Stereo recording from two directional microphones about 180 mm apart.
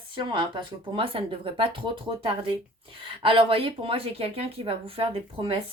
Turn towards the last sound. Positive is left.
turn(degrees=-30)  # may be behind; listen again after turning